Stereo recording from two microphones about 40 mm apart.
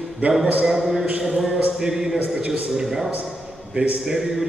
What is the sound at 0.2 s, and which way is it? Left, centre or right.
Speech, right.